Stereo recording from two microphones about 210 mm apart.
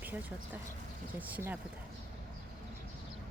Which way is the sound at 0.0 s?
10° right (ahead or behind).